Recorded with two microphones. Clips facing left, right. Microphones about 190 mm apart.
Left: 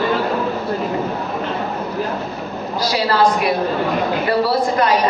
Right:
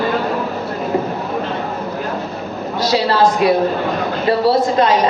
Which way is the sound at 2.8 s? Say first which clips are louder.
Right 2 dB; 25° right (ahead or behind).